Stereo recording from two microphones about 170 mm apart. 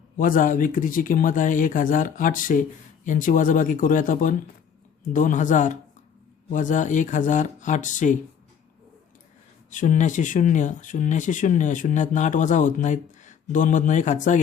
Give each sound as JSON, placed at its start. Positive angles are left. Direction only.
{"t": 0.2, "sound": "speech", "side_deg": 55}
{"t": 9.6, "sound": "speech", "side_deg": 50}